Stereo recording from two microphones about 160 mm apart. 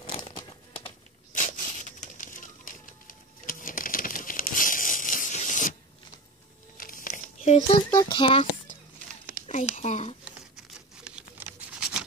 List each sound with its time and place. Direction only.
0.1 s crumpling: 30° left (ahead or behind)
1.3 s a sound: 50° left (ahead or behind)
6.8 s crumpling: 60° left (ahead or behind)
7.7 s speech: 25° left (ahead or behind)
9.5 s speech: 45° left (ahead or behind)
11.1 s patter: 10° right (ahead or behind)